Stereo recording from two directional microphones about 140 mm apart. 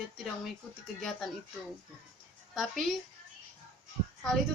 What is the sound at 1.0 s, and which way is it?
Speech, centre (ahead or behind).